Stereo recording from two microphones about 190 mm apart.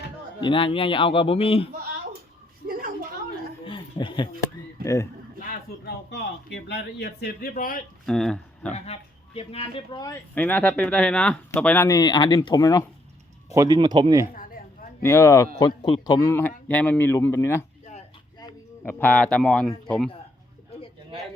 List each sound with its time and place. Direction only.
0.4 s speech: 30° left (ahead or behind)
2.6 s a sound: 50° right (ahead or behind)
3.7 s a sound: 25° left (ahead or behind)
4.8 s a sound: 50° right (ahead or behind)
5.4 s speech: 55° left (ahead or behind)
8.0 s speech: 5° left (ahead or behind)
8.7 s speech: 30° left (ahead or behind)
10.3 s speech: 10° left (ahead or behind)
13.5 s speech: 15° right (ahead or behind)
14.3 s a sound: 45° left (ahead or behind)
15.0 s speech: 15° left (ahead or behind)
18.8 s a man's voice: 10° left (ahead or behind)